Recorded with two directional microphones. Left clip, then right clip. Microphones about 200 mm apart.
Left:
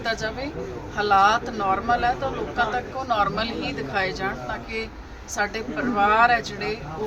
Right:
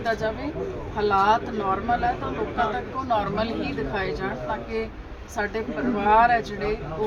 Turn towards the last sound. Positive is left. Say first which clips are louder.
# even
turn(degrees=0)  # may be behind; listen again after turning